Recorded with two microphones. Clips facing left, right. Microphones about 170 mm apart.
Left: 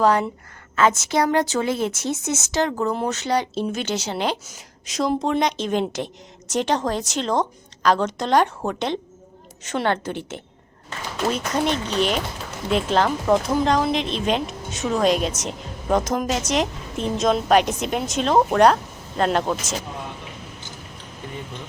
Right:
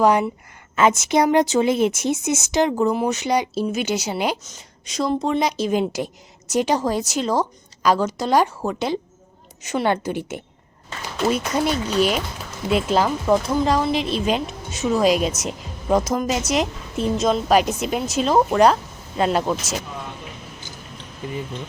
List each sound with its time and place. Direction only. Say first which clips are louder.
0.0 s speech: right 2 dB; 15° right (ahead or behind)
4.4 s speech: even; 5° left (ahead or behind)